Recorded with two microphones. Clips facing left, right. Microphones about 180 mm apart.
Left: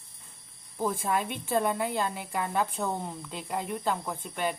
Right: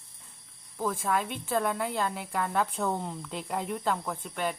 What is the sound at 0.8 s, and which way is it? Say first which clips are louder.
Speech: left 1 dB; 20° left (ahead or behind).